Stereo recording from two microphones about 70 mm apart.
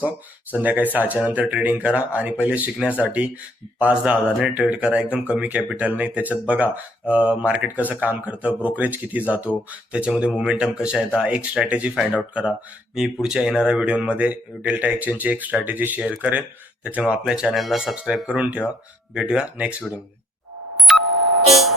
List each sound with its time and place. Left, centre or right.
0.5 s speech: right
17.5 s speech: centre
20.7 s beep: centre